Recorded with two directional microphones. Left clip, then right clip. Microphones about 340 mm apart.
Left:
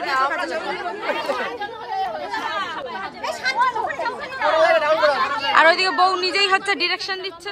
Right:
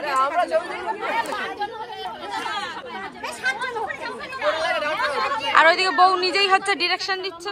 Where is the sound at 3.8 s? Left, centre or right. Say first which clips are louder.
Left 5 dB; left.